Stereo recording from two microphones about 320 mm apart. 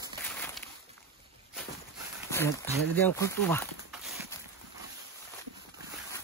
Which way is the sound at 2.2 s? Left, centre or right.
Centre.